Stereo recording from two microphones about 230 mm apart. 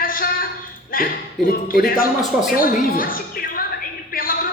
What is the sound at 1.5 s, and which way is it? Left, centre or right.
A woman's voice, left.